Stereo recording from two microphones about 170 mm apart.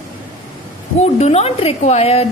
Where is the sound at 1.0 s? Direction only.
40° left (ahead or behind).